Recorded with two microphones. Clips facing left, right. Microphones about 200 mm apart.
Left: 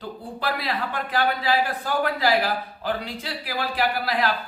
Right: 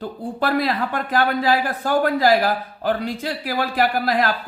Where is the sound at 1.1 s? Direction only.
50° right (ahead or behind).